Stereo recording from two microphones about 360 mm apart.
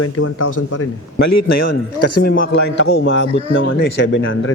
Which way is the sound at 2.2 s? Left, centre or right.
Left.